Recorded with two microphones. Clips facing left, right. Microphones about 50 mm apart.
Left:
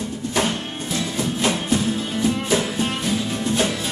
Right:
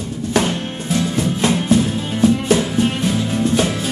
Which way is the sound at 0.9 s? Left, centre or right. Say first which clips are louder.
Right 5 dB; right.